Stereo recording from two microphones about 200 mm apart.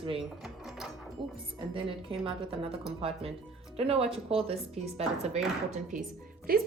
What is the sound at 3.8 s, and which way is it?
Speech, 30° right (ahead or behind).